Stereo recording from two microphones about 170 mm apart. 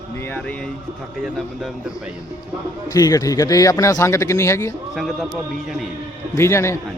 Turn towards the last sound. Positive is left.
turn(degrees=15)  # may be behind; listen again after turning